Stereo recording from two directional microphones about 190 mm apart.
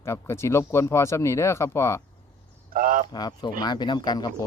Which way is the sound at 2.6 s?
45° right (ahead or behind).